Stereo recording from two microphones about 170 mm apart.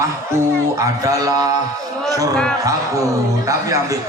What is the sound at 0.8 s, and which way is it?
Speech, 20° right (ahead or behind).